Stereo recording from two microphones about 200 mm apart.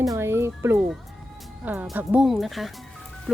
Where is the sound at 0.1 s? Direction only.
10° right (ahead or behind).